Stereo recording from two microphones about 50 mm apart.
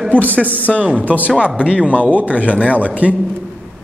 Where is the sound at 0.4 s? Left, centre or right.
Left.